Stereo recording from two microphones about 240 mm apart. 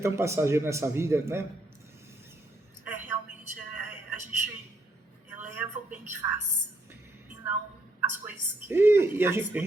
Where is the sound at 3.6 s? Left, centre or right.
Left.